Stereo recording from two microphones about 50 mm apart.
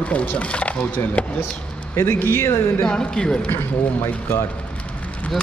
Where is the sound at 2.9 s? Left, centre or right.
Centre.